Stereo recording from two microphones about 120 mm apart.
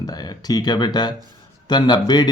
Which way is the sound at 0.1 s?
35° left (ahead or behind).